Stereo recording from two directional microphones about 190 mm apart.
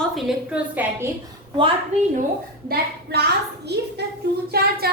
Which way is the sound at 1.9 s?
35° right (ahead or behind).